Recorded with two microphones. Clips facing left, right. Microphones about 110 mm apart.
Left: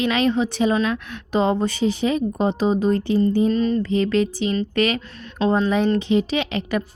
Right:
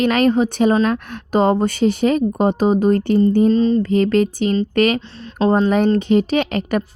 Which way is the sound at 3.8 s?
45° right (ahead or behind).